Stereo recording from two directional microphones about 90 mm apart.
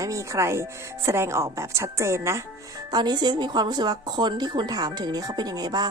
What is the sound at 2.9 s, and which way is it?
Speech, 55° right (ahead or behind).